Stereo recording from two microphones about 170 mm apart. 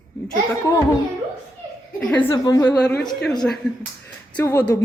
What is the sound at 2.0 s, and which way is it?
Speech, 10° left (ahead or behind).